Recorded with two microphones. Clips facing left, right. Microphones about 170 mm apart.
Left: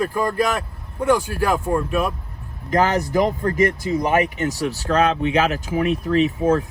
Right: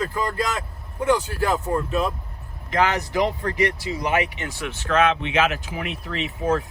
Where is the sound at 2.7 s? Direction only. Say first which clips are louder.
Left 4 dB; 40° left (ahead or behind).